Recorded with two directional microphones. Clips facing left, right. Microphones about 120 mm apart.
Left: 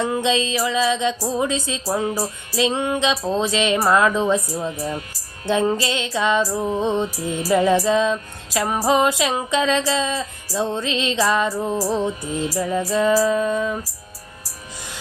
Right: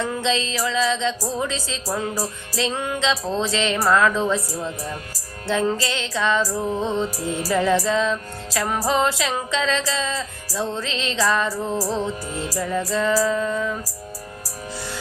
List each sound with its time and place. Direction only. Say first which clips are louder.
0.0 s music: left 3 dB; 15° left (ahead or behind)